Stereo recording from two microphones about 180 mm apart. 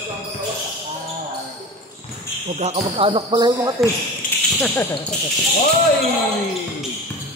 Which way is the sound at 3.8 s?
Centre (ahead or behind).